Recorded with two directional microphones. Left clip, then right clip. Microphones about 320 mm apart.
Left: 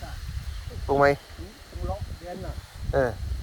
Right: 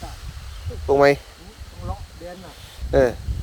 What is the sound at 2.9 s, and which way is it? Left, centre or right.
Speech, right.